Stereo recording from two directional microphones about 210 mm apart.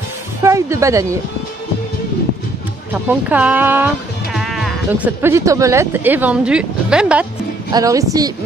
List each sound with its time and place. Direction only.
0.4 s speech: 15° right (ahead or behind)
2.9 s speech: 5° right (ahead or behind)
7.7 s a woman's voice: 15° right (ahead or behind)